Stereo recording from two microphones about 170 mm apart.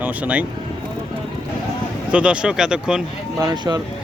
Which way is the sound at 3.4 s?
25° right (ahead or behind).